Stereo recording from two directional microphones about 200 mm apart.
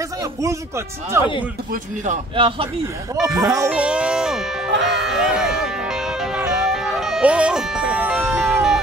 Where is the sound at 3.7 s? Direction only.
5° right (ahead or behind).